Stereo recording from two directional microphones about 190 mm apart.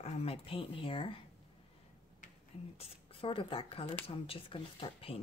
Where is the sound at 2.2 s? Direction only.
40° left (ahead or behind).